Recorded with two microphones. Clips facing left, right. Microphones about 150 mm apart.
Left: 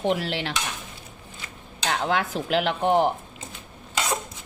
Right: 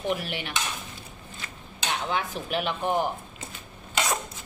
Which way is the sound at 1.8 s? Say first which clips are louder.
Left 4 dB; 90° left.